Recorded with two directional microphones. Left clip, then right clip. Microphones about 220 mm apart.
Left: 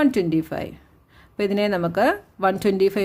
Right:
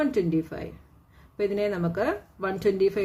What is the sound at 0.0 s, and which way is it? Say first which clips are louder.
Speech: left 5 dB; 50° left (ahead or behind).